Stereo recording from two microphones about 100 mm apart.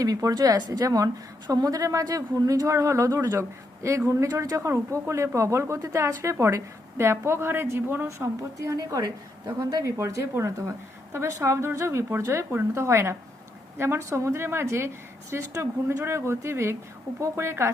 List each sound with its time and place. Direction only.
0.0 s a woman's voice: 35° right (ahead or behind)